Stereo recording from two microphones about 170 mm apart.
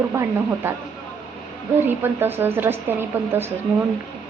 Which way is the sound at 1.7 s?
10° right (ahead or behind).